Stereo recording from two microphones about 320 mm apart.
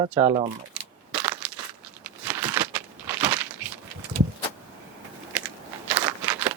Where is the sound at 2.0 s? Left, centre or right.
Centre.